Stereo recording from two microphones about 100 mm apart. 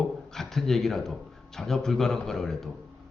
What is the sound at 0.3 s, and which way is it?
A man's voice, 5° left (ahead or behind).